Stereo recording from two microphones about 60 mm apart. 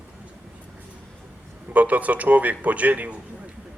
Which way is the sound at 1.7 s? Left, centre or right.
Right.